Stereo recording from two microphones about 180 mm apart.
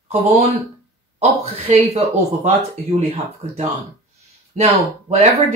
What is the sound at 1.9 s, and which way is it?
Speech, 35° right (ahead or behind).